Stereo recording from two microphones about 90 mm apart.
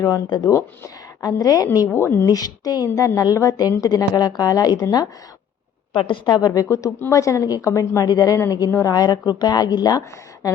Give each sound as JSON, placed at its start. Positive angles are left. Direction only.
{"t": 0.3, "sound": "speech", "side_deg": 55}
{"t": 1.2, "sound": "a woman's voice", "side_deg": 45}
{"t": 1.9, "sound": "a woman's voice", "side_deg": 25}
{"t": 2.2, "sound": "a woman's voice", "side_deg": 45}
{"t": 5.9, "sound": "a woman's voice", "side_deg": 70}